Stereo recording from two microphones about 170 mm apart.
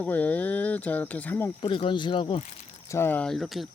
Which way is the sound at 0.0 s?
10° left (ahead or behind).